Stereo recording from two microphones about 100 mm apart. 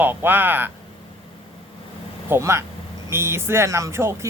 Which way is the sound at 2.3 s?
25° right (ahead or behind).